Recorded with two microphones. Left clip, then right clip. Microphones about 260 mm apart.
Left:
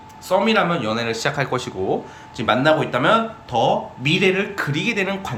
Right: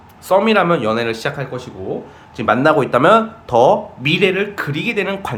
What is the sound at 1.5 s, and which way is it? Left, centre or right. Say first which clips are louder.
Speech: left 4 dB; centre.